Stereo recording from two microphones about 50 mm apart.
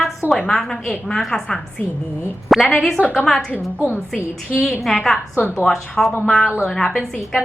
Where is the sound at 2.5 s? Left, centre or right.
Centre.